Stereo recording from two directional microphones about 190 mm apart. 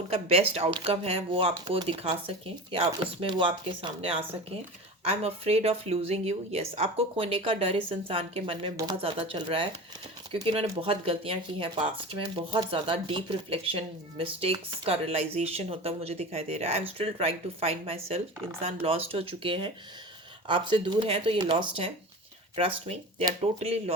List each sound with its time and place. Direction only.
0.1 s speech: 30° right (ahead or behind)